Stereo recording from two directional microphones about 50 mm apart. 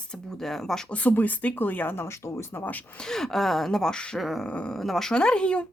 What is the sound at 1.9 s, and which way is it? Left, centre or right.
Speech, left.